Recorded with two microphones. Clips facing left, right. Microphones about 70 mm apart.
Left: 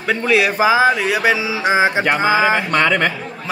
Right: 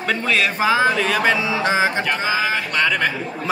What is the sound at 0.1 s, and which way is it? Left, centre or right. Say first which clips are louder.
Mantra: left 4 dB; centre.